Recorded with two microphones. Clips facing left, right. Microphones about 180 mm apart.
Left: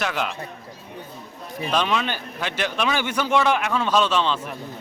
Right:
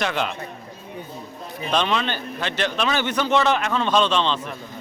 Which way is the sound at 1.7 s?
5° left (ahead or behind).